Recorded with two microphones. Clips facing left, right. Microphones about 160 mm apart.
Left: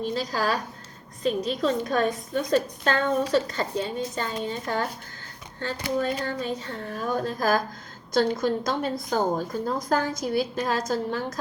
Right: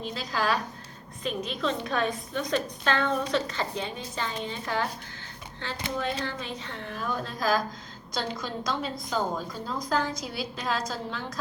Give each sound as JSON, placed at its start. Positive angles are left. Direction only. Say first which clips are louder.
{"t": 0.1, "sound": "a woman's voice", "louder": "right 2 dB", "side_deg": 40}
{"t": 6.0, "sound": "a woman's voice", "louder": "left 4 dB", "side_deg": 45}